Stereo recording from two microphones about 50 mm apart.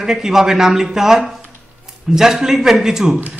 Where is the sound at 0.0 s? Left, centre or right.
Centre.